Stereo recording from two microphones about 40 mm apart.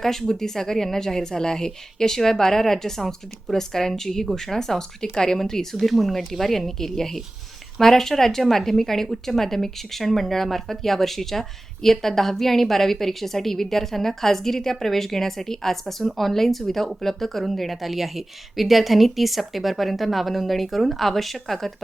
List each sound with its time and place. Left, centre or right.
0.0 s speech: centre
5.8 s speech: centre